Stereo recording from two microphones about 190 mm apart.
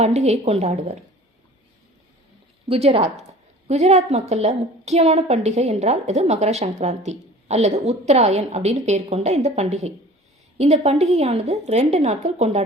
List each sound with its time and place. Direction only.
0.0 s a woman's voice: 35° right (ahead or behind)
2.6 s a woman's voice: 30° right (ahead or behind)